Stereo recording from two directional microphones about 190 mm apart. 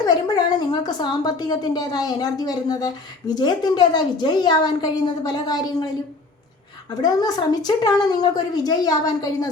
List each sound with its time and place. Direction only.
0.0 s a woman's voice: 20° left (ahead or behind)
7.0 s a woman's voice: 20° left (ahead or behind)